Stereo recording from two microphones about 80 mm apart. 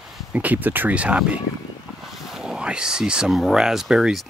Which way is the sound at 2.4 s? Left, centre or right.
Centre.